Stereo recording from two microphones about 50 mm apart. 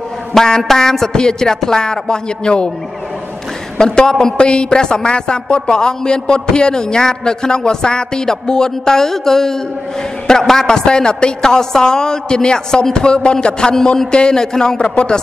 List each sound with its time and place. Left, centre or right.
0.3 s a woman's voice: centre
3.7 s a woman's voice: centre
13.7 s a woman's voice: centre